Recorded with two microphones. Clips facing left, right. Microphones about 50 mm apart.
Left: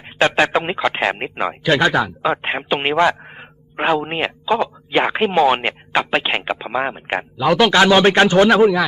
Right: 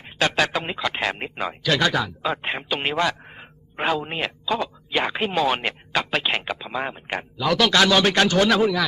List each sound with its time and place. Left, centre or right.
0.0 s speech: left